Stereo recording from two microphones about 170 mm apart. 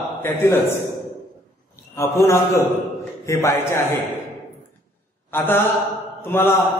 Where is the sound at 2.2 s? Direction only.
15° left (ahead or behind).